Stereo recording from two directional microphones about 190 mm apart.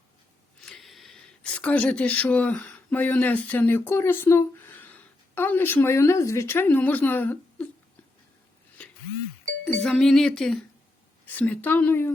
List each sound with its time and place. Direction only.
0.6 s speech: centre (ahead or behind)
9.8 s a woman's voice: 5° left (ahead or behind)